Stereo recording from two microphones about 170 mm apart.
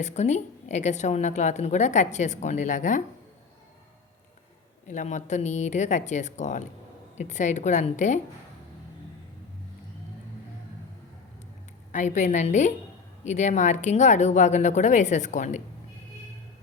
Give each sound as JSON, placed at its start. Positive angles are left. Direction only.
{"t": 0.0, "sound": "a woman's voice", "side_deg": 45}
{"t": 4.9, "sound": "a woman's voice", "side_deg": 45}
{"t": 11.9, "sound": "a woman's voice", "side_deg": 45}